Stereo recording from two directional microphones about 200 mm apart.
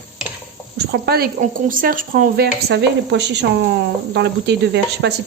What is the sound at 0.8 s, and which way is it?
Speech, 55° right (ahead or behind).